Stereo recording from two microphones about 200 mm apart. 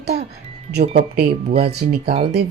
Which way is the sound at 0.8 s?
40° right (ahead or behind).